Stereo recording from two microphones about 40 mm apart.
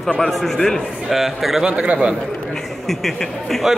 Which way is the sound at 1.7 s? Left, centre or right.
Right.